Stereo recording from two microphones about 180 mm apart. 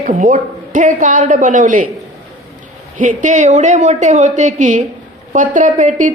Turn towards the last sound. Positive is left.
turn(degrees=-45)  # may be behind; listen again after turning